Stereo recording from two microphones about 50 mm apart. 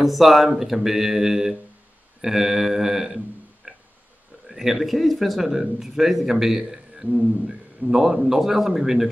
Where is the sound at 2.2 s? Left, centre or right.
Centre.